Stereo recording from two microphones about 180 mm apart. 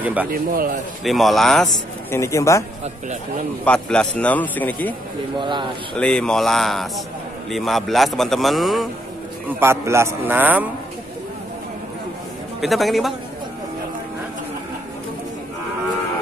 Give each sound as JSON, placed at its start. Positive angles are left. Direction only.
{"t": 0.0, "sound": "a man's voice", "side_deg": -10}
{"t": 0.3, "sound": "speech", "side_deg": -55}
{"t": 1.0, "sound": "a man's voice", "side_deg": 0}
{"t": 2.0, "sound": "a man's voice", "side_deg": 15}
{"t": 3.6, "sound": "a man's voice", "side_deg": 5}
{"t": 5.4, "sound": "speech", "side_deg": -25}
{"t": 5.9, "sound": "a man's voice", "side_deg": 5}
{"t": 9.6, "sound": "a man's voice", "side_deg": -15}
{"t": 12.5, "sound": "a man's voice", "side_deg": 0}